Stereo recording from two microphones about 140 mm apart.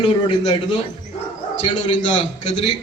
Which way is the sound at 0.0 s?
35° left (ahead or behind).